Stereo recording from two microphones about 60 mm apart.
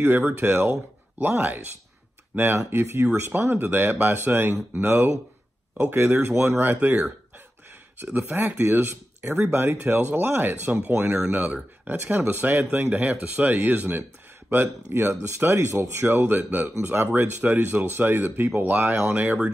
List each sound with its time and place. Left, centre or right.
0.0 s speech: right
6.6 s speech: right
8.1 s speech: right
9.2 s speech: right
9.5 s speech: right